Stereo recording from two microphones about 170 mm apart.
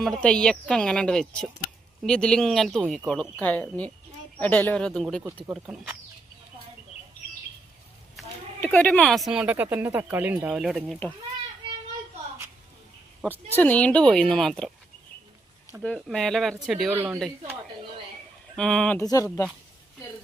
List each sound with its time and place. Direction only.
0.0 s speech: 5° left (ahead or behind)
8.6 s speech: 10° left (ahead or behind)
13.6 s speech: 10° left (ahead or behind)
15.8 s speech: 5° left (ahead or behind)
16.9 s a woman's voice: 15° right (ahead or behind)
18.5 s speech: 5° left (ahead or behind)
18.9 s speech: 20° left (ahead or behind)